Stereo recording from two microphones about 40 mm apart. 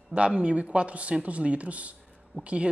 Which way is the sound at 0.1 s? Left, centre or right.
Right.